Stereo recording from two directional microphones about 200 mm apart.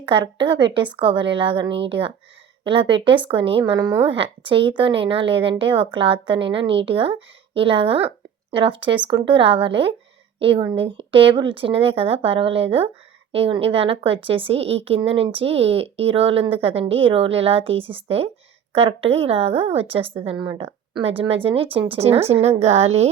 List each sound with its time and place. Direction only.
0.0 s a woman's voice: 25° right (ahead or behind)